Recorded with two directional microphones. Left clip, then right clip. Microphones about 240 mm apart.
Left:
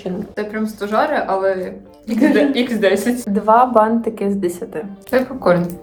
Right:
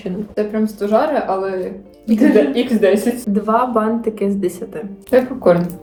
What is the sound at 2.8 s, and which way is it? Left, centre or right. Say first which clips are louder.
Speech: right 1 dB; centre.